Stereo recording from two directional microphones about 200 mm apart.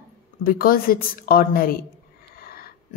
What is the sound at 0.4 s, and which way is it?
A woman's voice, 45° left (ahead or behind).